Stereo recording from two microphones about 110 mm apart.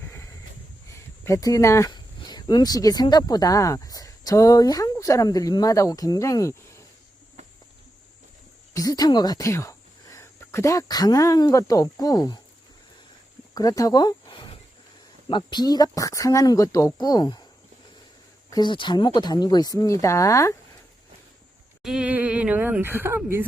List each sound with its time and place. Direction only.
0.0 s snort: 20° left (ahead or behind)
0.9 s speech: 25° left (ahead or behind)
8.7 s speech: 35° left (ahead or behind)
13.5 s speech: 35° left (ahead or behind)
18.5 s speech: 45° left (ahead or behind)
21.8 s speech: 10° right (ahead or behind)